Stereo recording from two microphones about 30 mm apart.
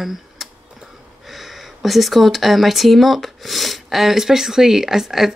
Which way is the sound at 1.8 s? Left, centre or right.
Centre.